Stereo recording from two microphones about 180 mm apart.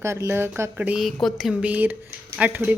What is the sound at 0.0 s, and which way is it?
A woman's voice, 15° right (ahead or behind).